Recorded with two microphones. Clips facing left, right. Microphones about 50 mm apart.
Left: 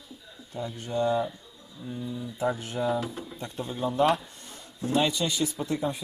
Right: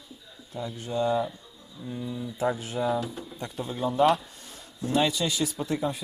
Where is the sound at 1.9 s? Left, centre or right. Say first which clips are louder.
Right 1 dB; centre.